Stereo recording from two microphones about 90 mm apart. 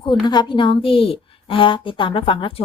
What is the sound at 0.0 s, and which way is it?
A woman's voice, 55° left (ahead or behind).